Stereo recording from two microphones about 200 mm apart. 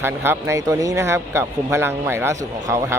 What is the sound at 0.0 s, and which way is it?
Speech, 10° right (ahead or behind).